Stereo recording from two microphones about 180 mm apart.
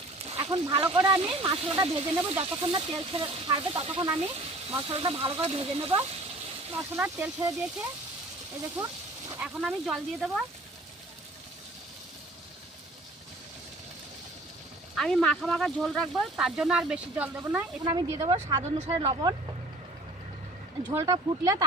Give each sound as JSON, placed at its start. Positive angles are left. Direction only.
{"t": 0.3, "sound": "speech", "side_deg": -30}
{"t": 6.7, "sound": "speech", "side_deg": -10}
{"t": 9.4, "sound": "speech", "side_deg": -5}
{"t": 14.9, "sound": "speech", "side_deg": 5}
{"t": 17.8, "sound": "speech", "side_deg": -20}
{"t": 20.9, "sound": "speech", "side_deg": -20}